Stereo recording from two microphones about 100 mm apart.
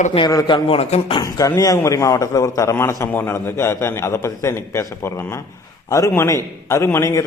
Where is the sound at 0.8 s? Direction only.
90° left.